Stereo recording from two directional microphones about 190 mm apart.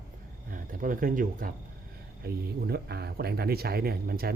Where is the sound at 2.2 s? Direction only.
60° right (ahead or behind).